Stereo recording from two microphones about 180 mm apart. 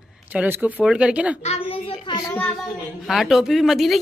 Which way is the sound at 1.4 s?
35° left (ahead or behind).